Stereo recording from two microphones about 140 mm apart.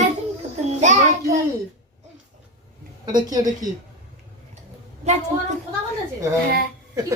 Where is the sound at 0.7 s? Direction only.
55° right (ahead or behind).